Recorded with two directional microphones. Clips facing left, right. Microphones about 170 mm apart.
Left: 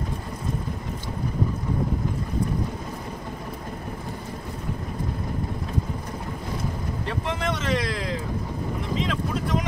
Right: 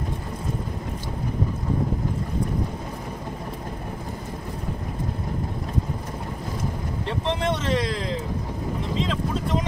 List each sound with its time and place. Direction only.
7.1 s speech: 25° right (ahead or behind)